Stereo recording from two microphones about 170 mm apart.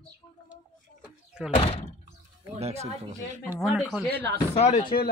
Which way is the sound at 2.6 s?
40° right (ahead or behind).